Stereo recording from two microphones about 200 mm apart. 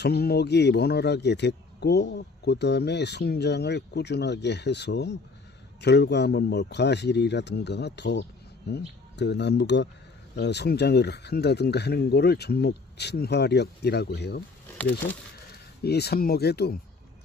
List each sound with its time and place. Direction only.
0.0 s speech: 55° left (ahead or behind)
15.8 s speech: 55° left (ahead or behind)